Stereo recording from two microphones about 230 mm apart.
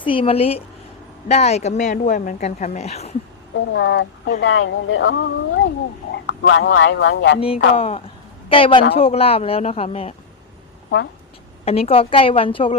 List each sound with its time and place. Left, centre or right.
0.0 s a woman's voice: left
3.7 s speech: left
7.3 s a woman's voice: left
11.6 s a woman's voice: left